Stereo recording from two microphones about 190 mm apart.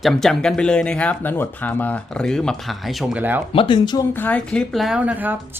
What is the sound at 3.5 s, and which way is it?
Speech, 25° left (ahead or behind).